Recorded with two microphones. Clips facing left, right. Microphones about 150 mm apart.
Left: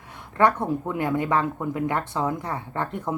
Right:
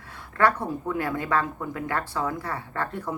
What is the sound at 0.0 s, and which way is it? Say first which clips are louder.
Speech: left 2 dB; 20° left (ahead or behind).